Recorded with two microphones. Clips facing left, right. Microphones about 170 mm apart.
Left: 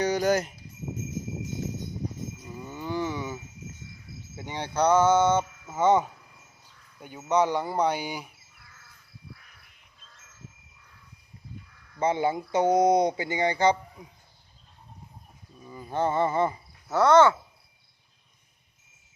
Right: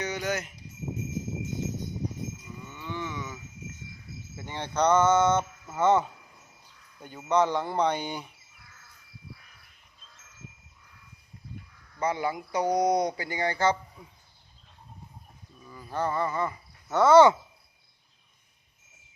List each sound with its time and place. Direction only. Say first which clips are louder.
0.0 s speech: left 7 dB; 35° left (ahead or behind)
2.6 s a sound: left 7 dB; 35° left (ahead or behind)
4.4 s speech: left 1 dB; 15° left (ahead or behind)
11.9 s speech: left 4 dB; 25° left (ahead or behind)
15.6 s a sound: left 3 dB; 20° left (ahead or behind)
16.9 s speech: even; centre (ahead or behind)